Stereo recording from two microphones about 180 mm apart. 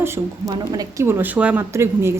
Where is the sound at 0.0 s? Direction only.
20° right (ahead or behind).